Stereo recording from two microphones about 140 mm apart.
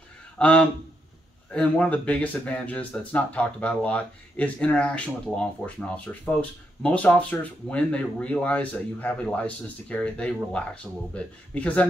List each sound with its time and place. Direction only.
0.4 s speech: 10° left (ahead or behind)